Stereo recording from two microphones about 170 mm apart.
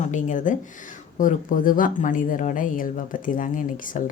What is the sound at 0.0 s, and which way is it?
Speech, 45° left (ahead or behind).